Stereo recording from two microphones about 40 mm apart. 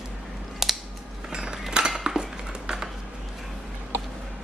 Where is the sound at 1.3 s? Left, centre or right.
Right.